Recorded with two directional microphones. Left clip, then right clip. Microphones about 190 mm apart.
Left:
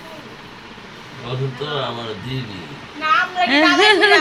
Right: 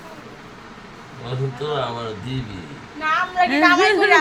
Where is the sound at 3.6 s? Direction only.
60° right (ahead or behind).